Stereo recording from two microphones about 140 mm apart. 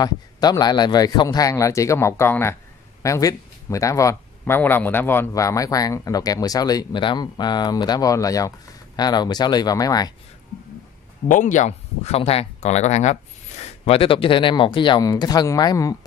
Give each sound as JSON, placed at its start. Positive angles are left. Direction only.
{"t": 0.0, "sound": "a man's voice", "side_deg": 30}
{"t": 11.2, "sound": "speech", "side_deg": 65}